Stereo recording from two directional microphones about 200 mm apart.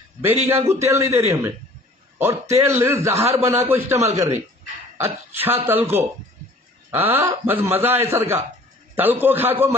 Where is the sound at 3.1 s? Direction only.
30° right (ahead or behind).